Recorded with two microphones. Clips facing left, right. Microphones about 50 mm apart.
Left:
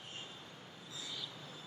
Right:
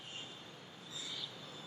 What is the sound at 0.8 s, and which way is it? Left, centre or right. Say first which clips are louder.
Train: even; left.